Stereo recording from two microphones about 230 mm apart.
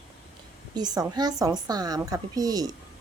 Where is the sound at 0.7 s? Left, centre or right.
Centre.